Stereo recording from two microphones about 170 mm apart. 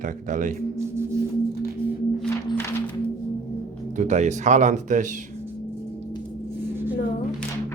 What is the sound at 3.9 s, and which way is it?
Speech, 45° right (ahead or behind).